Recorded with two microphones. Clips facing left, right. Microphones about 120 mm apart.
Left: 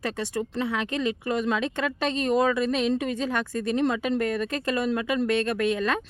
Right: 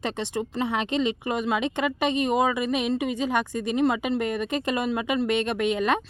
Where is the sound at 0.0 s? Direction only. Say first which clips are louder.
Even; 20° right (ahead or behind).